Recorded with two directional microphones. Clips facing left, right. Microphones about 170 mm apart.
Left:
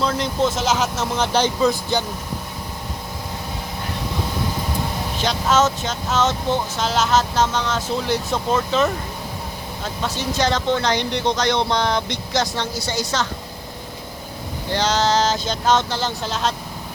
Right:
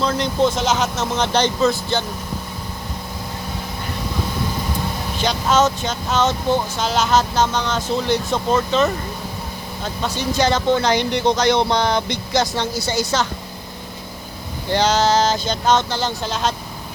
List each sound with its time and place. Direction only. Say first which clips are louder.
0.0 s speech: right 2 dB; 5° left (ahead or behind)
5.1 s speech: right 1 dB; centre (ahead or behind)
9.8 s speech: right 2 dB; centre (ahead or behind)
14.7 s speech: right 3 dB; 10° right (ahead or behind)